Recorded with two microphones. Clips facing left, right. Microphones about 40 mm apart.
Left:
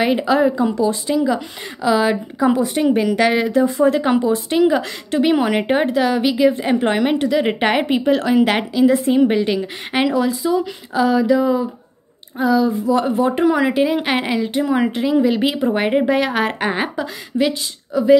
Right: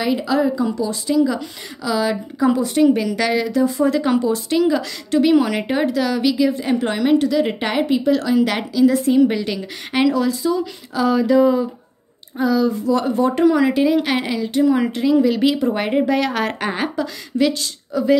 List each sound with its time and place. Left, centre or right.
0.0 s a woman's voice: left; by 11.1 s centre
11.1 s speech: centre
12.4 s speech: centre